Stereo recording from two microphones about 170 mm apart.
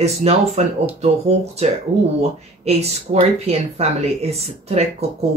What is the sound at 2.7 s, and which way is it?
Speech, 40° right (ahead or behind).